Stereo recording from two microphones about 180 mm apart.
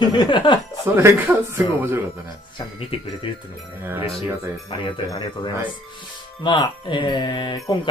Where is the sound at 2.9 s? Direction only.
30° left (ahead or behind).